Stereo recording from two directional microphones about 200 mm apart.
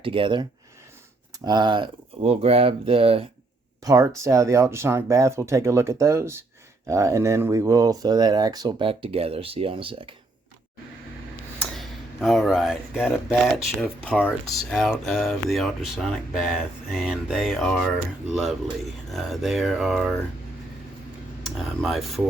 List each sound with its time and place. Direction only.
0.0 s speech: 25° right (ahead or behind)
1.5 s speech: 20° right (ahead or behind)
3.8 s speech: 15° right (ahead or behind)
11.6 s speech: centre (ahead or behind)
21.4 s speech: centre (ahead or behind)